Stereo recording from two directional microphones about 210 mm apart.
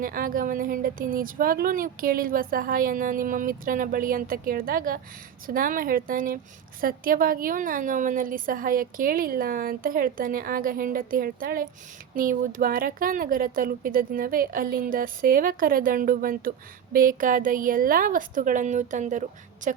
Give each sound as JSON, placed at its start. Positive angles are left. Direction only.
{"t": 0.0, "sound": "speech", "side_deg": -40}